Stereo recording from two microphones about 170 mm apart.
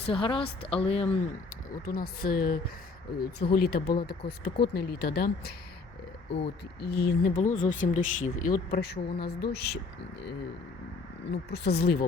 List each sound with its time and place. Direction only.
0.0 s a woman's voice: 30° left (ahead or behind)
1.7 s speech: 55° left (ahead or behind)
6.3 s speech: 80° left
7.3 s speech: 50° left (ahead or behind); by 9.8 s 70° left (ahead or behind)
11.3 s speech: 80° left